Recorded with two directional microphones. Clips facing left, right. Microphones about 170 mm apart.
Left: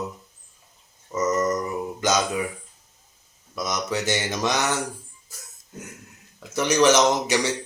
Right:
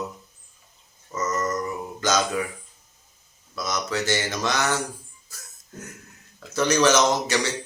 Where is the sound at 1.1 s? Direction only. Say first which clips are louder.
Left 4 dB; 15° left (ahead or behind).